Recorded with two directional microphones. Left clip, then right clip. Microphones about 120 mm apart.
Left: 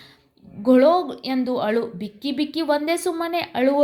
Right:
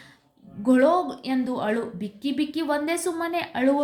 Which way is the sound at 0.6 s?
30° left (ahead or behind).